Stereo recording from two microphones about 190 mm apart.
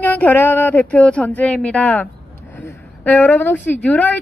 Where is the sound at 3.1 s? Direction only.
10° left (ahead or behind).